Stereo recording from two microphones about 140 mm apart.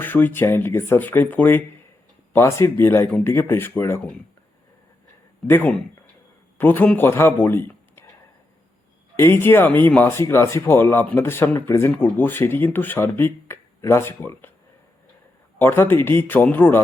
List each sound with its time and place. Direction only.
0.0 s speech: 15° left (ahead or behind)
5.5 s speech: 15° left (ahead or behind)
9.1 s speech: 20° left (ahead or behind)
15.5 s speech: 15° left (ahead or behind)